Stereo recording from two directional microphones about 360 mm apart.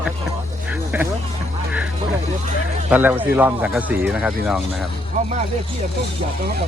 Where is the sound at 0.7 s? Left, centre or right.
Centre.